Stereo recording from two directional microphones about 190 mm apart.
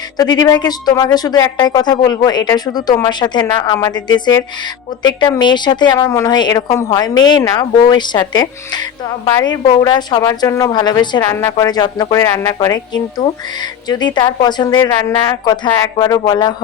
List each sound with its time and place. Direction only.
0.2 s speech: 20° left (ahead or behind)